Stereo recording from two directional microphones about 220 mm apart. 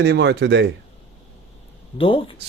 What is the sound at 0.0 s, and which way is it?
Speech, 50° right (ahead or behind).